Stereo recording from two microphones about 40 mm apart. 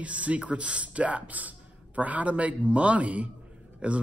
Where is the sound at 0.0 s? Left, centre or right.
Right.